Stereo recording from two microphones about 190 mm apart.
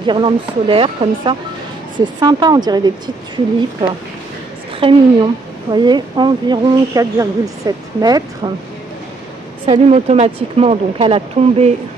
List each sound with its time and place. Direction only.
0.0 s speech: 25° right (ahead or behind)
4.7 s speech: 25° right (ahead or behind)
9.7 s speech: 35° right (ahead or behind)